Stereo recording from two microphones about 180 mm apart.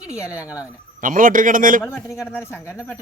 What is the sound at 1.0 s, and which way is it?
Speech, 50° right (ahead or behind).